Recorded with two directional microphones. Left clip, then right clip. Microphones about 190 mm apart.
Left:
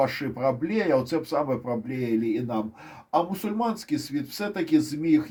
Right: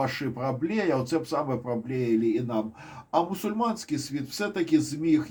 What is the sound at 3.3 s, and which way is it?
Speech, 30° left (ahead or behind).